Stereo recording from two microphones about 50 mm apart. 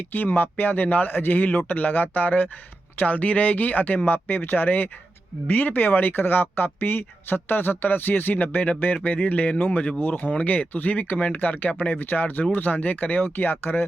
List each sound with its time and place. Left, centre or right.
0.1 s speech: left